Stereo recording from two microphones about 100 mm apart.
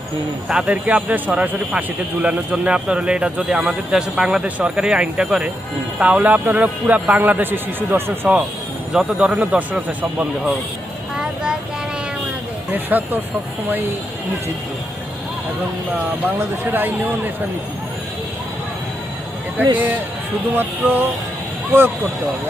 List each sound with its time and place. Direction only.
0.4 s speech: 10° right (ahead or behind)
8.9 s speech: 10° right (ahead or behind)
12.7 s speech: 20° right (ahead or behind)
16.7 s a man's voice: 20° right (ahead or behind)
19.6 s a man's voice: 20° right (ahead or behind)